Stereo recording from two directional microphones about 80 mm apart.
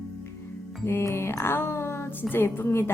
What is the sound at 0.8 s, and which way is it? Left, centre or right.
Music, left.